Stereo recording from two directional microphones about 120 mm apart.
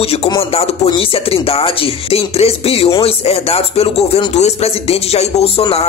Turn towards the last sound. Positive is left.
turn(degrees=55)  # may be behind; listen again after turning